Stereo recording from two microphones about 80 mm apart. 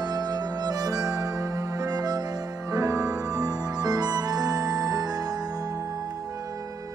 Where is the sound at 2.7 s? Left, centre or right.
Right.